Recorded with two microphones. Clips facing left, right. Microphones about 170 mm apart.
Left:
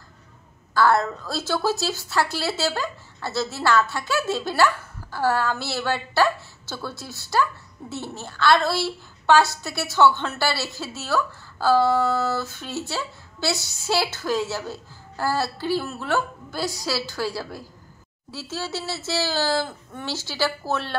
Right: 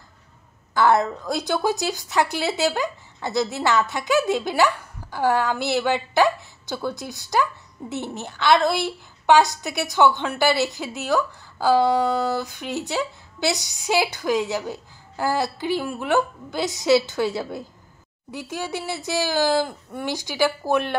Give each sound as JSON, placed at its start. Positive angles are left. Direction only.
{"t": 0.7, "sound": "a woman's voice", "side_deg": -20}